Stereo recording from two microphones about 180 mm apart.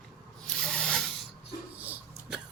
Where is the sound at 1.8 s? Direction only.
10° right (ahead or behind).